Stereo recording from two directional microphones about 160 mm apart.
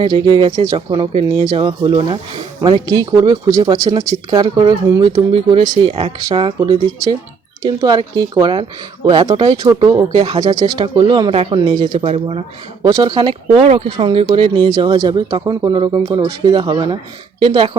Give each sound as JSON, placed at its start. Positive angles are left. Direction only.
{"t": 0.0, "sound": "speech", "side_deg": -30}